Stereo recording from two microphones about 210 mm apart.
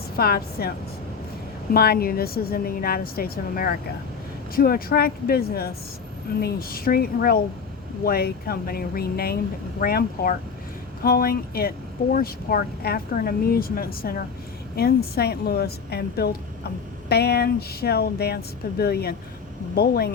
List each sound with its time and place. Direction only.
0.2 s a woman's voice: 45° left (ahead or behind)
1.7 s a woman's voice: 45° left (ahead or behind)